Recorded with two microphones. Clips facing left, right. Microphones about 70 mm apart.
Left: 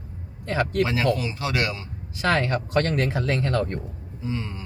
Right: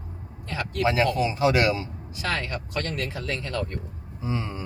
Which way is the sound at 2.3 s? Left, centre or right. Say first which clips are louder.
Left 8 dB; left.